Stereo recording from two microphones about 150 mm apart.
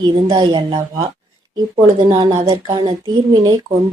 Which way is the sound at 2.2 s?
25° right (ahead or behind).